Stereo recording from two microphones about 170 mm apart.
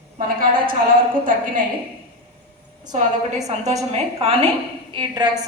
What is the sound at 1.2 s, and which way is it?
Speech, 55° right (ahead or behind).